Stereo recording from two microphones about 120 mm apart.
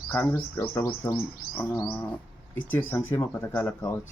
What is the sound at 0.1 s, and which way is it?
Speech, 15° left (ahead or behind).